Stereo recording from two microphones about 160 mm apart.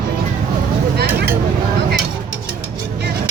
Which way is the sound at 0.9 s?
85° right.